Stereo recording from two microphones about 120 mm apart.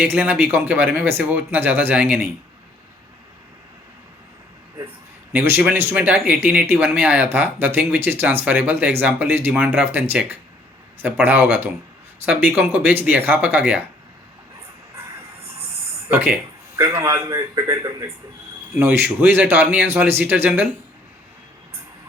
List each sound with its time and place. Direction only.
0.2 s speech: 15° right (ahead or behind)
5.3 s speech: 15° right (ahead or behind)
16.0 s a man's voice: 15° right (ahead or behind)
18.8 s speech: 15° right (ahead or behind)